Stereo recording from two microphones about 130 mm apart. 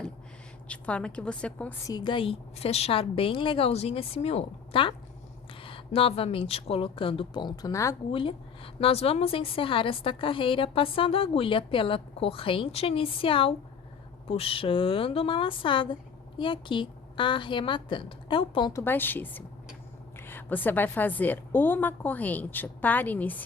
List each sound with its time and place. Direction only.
0.7 s a woman's voice: 10° left (ahead or behind)
1.9 s a woman's voice: 35° left (ahead or behind)
8.1 s a woman's voice: 45° left (ahead or behind)
18.7 s a woman's voice: 20° left (ahead or behind)